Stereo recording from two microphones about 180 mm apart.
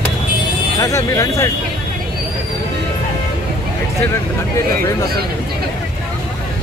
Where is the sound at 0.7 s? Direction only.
20° left (ahead or behind).